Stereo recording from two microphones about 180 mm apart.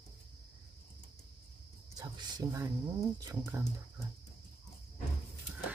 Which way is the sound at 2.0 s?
20° right (ahead or behind).